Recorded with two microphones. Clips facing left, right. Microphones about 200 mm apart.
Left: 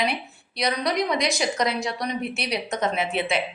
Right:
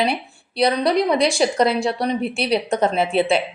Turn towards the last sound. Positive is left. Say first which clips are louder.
# right 7 dB
turn(degrees=-30)  # may be behind; listen again after turning